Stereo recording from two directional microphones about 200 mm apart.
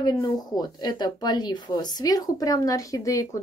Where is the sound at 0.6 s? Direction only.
20° left (ahead or behind).